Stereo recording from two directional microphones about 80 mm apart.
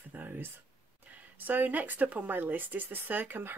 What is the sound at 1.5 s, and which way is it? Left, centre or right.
Speech, right.